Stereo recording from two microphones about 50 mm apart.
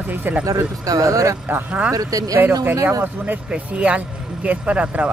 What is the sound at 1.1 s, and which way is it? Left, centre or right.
Speech, right.